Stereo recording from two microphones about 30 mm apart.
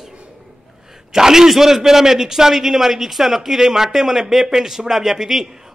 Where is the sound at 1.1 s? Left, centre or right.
Centre.